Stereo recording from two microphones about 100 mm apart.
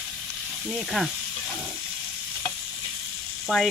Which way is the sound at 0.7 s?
Centre (ahead or behind).